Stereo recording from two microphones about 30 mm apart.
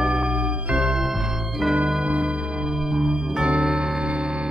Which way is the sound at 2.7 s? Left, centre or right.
Centre.